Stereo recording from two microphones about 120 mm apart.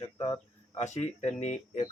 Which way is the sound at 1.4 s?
75° left (ahead or behind).